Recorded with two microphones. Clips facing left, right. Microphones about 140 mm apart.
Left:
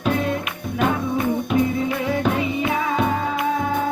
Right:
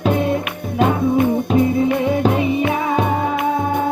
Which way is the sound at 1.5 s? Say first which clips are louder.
Right 5 dB; 30° right (ahead or behind).